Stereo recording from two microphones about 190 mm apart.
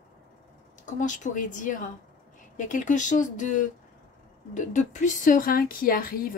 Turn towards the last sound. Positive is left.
turn(degrees=50)  # may be behind; listen again after turning